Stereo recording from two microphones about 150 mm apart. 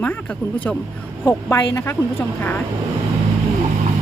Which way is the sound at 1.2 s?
15° left (ahead or behind).